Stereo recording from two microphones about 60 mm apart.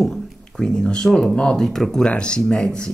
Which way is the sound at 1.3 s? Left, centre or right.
Centre.